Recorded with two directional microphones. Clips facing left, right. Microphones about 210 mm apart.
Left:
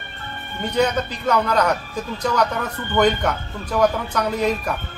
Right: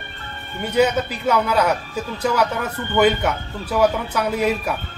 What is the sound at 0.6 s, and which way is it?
Speech, 10° right (ahead or behind).